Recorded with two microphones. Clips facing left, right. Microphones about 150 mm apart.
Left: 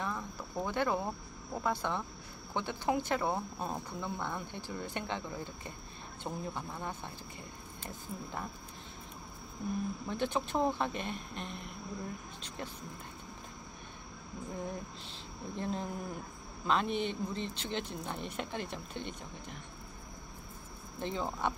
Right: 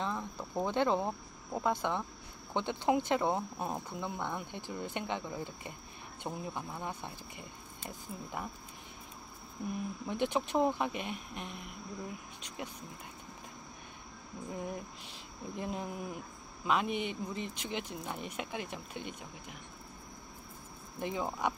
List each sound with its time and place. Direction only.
0.0 s speech: 20° right (ahead or behind)
10.0 s speech: 20° right (ahead or behind)
15.0 s speech: 10° right (ahead or behind)
21.0 s speech: 10° right (ahead or behind)